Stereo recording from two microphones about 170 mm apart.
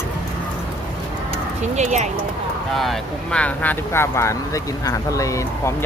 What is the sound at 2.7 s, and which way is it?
Speech, centre (ahead or behind).